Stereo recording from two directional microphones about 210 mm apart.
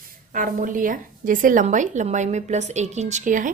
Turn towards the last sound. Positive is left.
turn(degrees=-40)  # may be behind; listen again after turning